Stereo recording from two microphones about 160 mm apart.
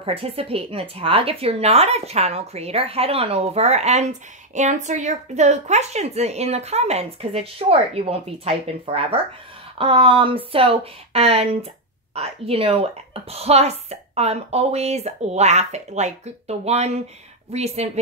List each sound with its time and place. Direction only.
0.0 s speech: 35° right (ahead or behind)